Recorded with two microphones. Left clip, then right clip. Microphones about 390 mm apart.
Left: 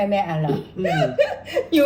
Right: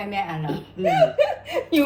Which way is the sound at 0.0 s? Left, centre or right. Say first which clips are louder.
Left 6 dB; centre.